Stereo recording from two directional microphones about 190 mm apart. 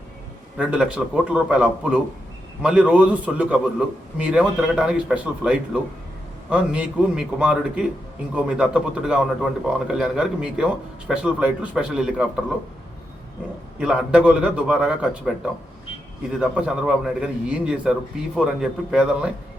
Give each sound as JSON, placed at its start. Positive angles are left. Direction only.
{"t": 0.5, "sound": "a man's voice", "side_deg": -5}
{"t": 13.7, "sound": "a man's voice", "side_deg": -5}
{"t": 16.4, "sound": "a man's voice", "side_deg": -5}